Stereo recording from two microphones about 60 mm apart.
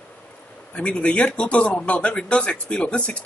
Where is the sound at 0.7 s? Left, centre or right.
Centre.